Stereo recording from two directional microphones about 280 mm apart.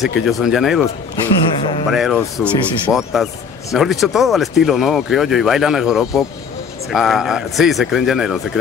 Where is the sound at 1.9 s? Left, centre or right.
Centre.